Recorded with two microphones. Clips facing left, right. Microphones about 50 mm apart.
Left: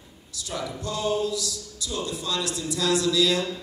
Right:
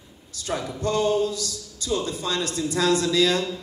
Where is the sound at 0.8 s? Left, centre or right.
Right.